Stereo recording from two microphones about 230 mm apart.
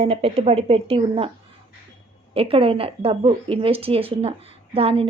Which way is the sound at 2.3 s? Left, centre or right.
Right.